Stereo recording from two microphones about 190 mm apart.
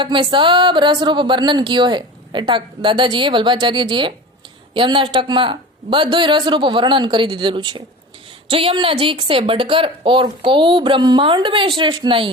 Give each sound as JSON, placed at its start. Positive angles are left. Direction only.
{"t": 0.0, "sound": "speech", "side_deg": -25}